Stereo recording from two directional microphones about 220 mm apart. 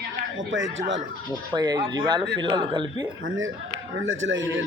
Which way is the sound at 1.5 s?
20° right (ahead or behind).